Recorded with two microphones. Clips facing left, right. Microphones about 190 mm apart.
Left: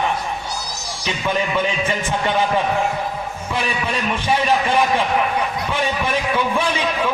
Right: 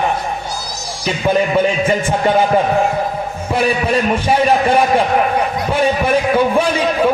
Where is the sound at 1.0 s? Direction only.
40° right (ahead or behind).